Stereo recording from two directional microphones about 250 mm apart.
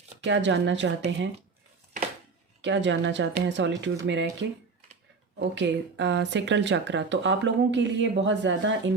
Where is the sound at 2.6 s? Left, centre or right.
Right.